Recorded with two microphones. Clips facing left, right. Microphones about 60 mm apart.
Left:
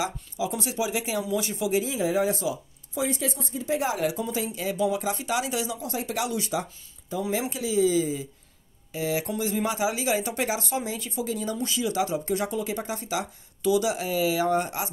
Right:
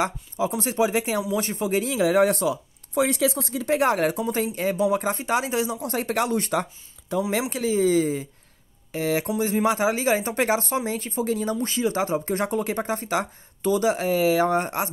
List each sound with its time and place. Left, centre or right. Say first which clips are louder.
0.0 s speech: right 4 dB; right
1.9 s speech: right 5 dB; right
5.9 s speech: right 5 dB; right